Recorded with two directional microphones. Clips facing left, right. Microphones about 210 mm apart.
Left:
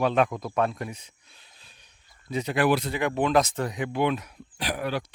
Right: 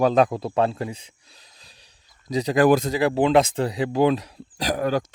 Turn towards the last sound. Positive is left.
turn(degrees=-45)  # may be behind; listen again after turning